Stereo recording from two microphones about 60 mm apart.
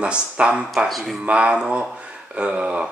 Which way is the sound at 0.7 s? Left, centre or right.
Centre.